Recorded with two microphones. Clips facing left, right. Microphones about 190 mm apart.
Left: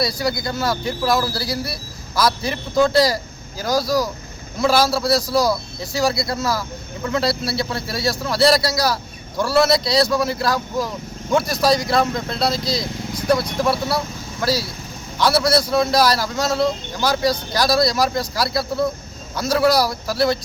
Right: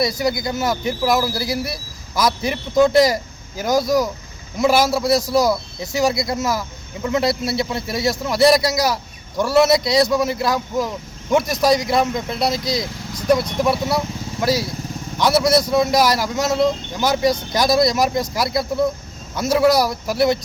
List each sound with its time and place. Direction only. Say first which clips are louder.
0.0 s speech: right 2 dB; 20° right (ahead or behind)